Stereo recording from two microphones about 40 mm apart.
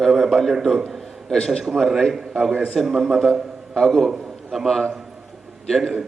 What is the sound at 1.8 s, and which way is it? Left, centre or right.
Speech, centre.